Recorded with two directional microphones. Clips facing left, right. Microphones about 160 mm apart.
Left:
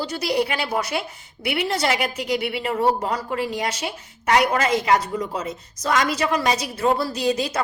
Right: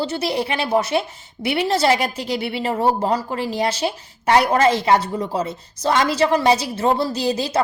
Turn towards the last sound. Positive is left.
turn(degrees=-30)  # may be behind; listen again after turning